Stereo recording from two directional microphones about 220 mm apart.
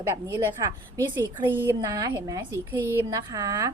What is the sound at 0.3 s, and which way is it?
A woman's voice, 15° right (ahead or behind).